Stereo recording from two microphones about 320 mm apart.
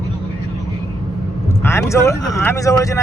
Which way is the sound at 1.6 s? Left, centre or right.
Centre.